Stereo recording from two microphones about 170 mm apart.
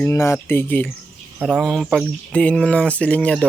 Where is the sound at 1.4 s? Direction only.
Centre (ahead or behind).